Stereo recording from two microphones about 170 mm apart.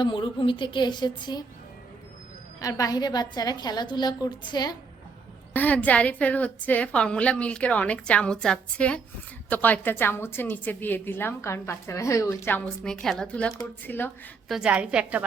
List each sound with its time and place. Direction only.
0.0 s a woman's voice: 30° left (ahead or behind)
2.6 s a woman's voice: 20° left (ahead or behind)
5.5 s a woman's voice: 10° left (ahead or behind)
14.4 s a woman's voice: 5° right (ahead or behind)